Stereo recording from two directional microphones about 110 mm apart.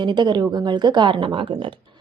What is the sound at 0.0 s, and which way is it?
A woman's voice, 45° right (ahead or behind).